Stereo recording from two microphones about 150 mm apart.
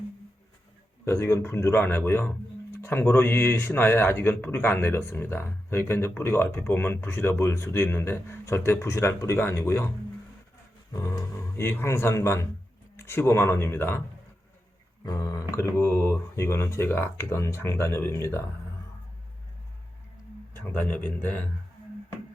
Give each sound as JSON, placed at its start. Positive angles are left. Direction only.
{"t": 1.0, "sound": "speech", "side_deg": 15}
{"t": 10.9, "sound": "speech", "side_deg": 20}
{"t": 15.0, "sound": "speech", "side_deg": 25}
{"t": 20.5, "sound": "speech", "side_deg": 10}